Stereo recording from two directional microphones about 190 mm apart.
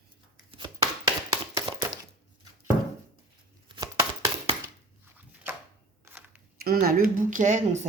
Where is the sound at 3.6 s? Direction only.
20° right (ahead or behind).